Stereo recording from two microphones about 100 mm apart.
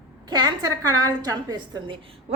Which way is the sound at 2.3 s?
75° right (ahead or behind).